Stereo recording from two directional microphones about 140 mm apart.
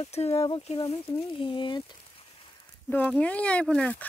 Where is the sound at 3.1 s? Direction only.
10° left (ahead or behind).